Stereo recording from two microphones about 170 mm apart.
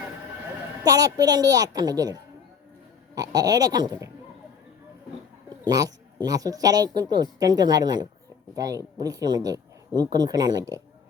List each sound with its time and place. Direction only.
0.9 s speech: 20° right (ahead or behind)
5.6 s speech: 20° right (ahead or behind)